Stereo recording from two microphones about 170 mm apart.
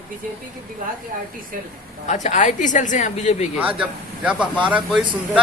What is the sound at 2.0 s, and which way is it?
A woman's voice, 45° left (ahead or behind).